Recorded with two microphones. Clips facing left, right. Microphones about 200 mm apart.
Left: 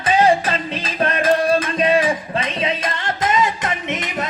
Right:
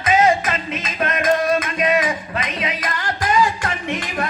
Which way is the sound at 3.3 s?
20° left (ahead or behind).